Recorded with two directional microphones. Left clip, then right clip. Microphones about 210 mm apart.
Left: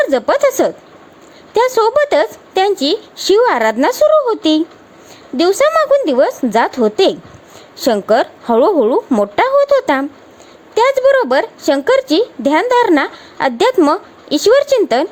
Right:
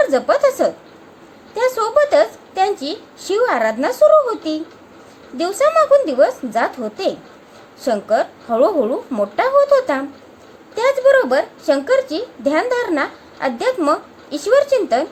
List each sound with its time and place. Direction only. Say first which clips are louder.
0.0 s speech: left 2 dB; 35° left (ahead or behind)